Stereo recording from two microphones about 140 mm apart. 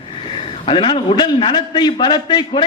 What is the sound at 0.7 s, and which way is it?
A man's voice, 35° left (ahead or behind).